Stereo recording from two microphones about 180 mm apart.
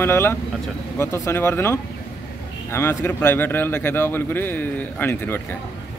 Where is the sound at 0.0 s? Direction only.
15° left (ahead or behind).